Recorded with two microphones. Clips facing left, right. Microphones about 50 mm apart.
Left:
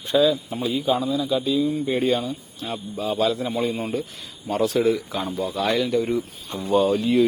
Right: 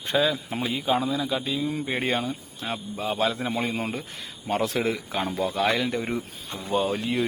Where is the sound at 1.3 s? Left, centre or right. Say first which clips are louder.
Left 6 dB; right.